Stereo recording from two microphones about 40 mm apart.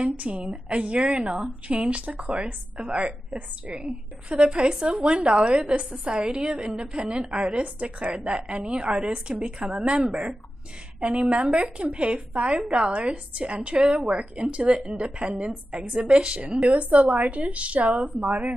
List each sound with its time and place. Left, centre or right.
0.0 s a woman's voice: right
8.4 s a woman's voice: centre
8.6 s a woman's voice: right
16.6 s speech: right